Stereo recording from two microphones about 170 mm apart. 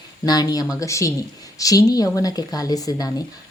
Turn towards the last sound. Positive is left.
turn(degrees=20)  # may be behind; listen again after turning